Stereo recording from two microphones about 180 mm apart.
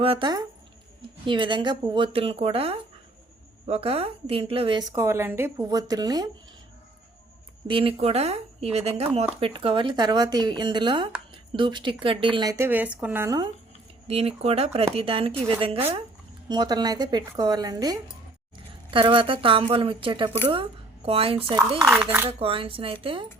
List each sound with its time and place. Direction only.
0.0 s speech: 30° right (ahead or behind)
7.7 s speech: 30° right (ahead or behind)
14.1 s speech: 35° right (ahead or behind)
21.8 s speech: 10° right (ahead or behind)
22.3 s speech: 30° right (ahead or behind)